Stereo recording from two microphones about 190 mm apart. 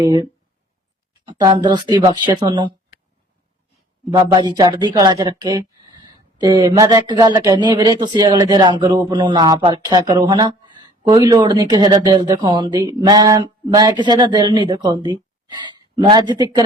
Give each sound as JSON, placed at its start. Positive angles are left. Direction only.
{"t": 0.0, "sound": "speech", "side_deg": -25}
{"t": 4.1, "sound": "speech", "side_deg": -20}